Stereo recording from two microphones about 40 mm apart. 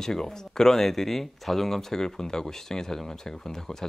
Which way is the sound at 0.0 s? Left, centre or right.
Centre.